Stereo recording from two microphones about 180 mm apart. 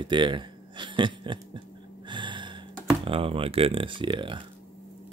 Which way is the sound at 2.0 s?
25° right (ahead or behind).